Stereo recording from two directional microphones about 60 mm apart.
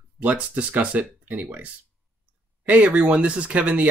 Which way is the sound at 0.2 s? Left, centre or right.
Right.